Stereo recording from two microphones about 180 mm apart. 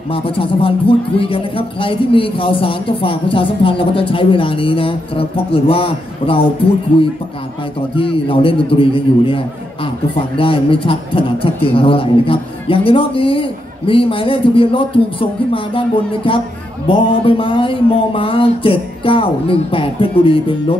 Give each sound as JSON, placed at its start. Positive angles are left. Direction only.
{"t": 0.1, "sound": "speech", "side_deg": 30}